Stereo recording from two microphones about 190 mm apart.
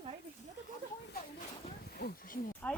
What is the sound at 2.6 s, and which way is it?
Speech, 5° left (ahead or behind).